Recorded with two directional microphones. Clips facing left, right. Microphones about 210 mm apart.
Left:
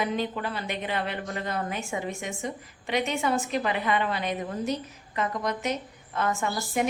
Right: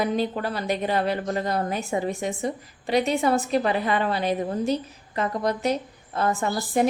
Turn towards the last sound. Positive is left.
turn(degrees=-35)  # may be behind; listen again after turning